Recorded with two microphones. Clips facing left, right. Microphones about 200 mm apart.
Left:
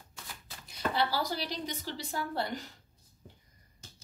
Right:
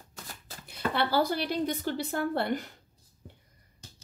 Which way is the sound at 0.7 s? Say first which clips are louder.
Right 2 dB; 60° right (ahead or behind).